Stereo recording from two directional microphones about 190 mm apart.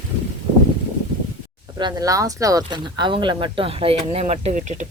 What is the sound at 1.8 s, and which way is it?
Speech, 20° right (ahead or behind).